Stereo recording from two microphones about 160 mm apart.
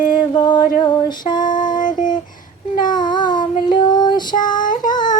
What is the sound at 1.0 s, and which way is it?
Female singing, 25° left (ahead or behind).